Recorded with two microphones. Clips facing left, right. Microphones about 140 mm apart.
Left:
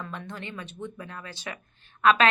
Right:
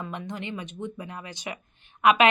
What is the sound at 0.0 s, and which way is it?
Speech, 15° right (ahead or behind).